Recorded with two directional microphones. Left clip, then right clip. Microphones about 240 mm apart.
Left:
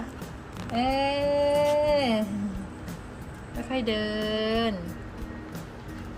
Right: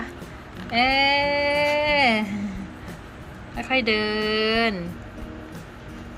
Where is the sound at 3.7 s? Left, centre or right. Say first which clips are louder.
Right 7 dB; centre.